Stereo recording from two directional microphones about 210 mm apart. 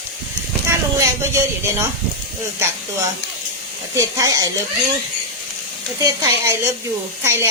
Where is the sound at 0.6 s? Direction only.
15° right (ahead or behind).